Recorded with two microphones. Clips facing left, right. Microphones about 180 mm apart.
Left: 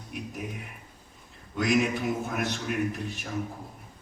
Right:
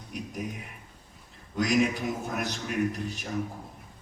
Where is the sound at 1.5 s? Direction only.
Centre (ahead or behind).